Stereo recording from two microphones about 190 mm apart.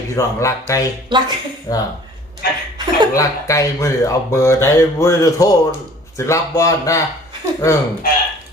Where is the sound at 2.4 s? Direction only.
55° left (ahead or behind).